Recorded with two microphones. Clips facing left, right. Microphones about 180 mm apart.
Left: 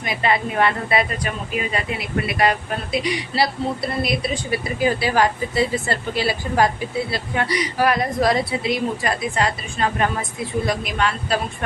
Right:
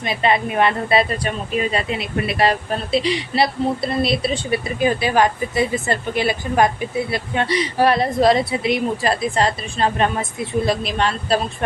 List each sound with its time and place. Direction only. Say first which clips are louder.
0.0 s a woman's voice: right 2 dB; 25° right (ahead or behind)